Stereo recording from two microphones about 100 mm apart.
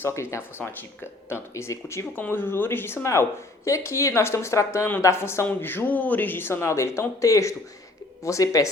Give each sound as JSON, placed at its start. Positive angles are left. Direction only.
{"t": 0.0, "sound": "speech", "side_deg": 25}
{"t": 2.1, "sound": "speech", "side_deg": 20}